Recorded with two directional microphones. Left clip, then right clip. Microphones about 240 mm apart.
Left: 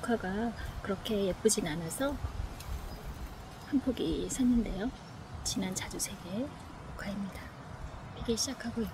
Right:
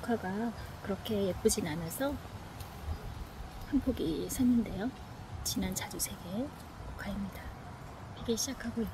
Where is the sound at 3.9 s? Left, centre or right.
Centre.